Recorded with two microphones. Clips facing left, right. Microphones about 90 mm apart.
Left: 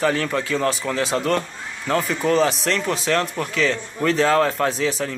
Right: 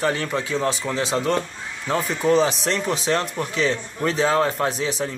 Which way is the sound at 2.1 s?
15° right (ahead or behind).